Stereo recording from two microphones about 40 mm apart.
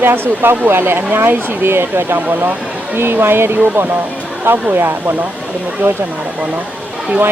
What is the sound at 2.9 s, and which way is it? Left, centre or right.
Speech, right.